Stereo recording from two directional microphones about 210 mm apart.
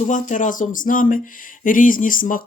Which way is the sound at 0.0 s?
35° left (ahead or behind).